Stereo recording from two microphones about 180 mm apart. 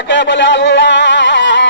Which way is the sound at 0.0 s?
80° left.